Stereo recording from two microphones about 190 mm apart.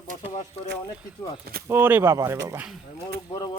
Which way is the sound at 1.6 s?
10° right (ahead or behind).